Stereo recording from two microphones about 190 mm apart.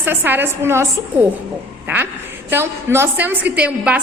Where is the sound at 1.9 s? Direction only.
10° right (ahead or behind).